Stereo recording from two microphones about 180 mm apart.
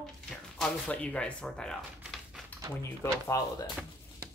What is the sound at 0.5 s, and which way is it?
Speech, 5° left (ahead or behind).